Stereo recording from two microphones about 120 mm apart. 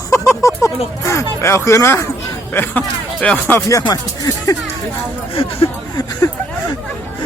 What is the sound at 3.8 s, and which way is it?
Speech, 35° left (ahead or behind).